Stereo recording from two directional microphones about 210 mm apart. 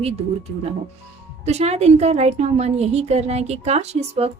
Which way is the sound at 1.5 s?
30° right (ahead or behind).